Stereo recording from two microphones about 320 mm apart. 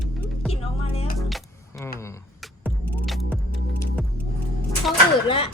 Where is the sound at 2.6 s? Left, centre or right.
Centre.